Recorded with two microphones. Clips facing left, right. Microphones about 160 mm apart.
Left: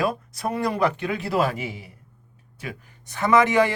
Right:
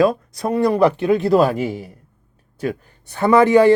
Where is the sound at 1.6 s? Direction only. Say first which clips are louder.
Right 9 dB; 50° right (ahead or behind).